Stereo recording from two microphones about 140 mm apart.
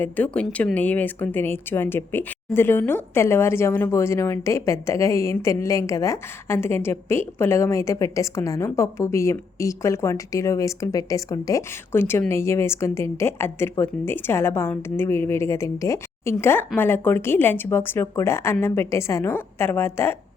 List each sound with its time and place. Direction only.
0.0 s a woman's voice: 10° left (ahead or behind)